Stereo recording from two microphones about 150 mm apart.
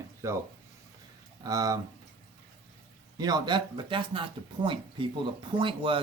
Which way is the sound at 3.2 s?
30° right (ahead or behind).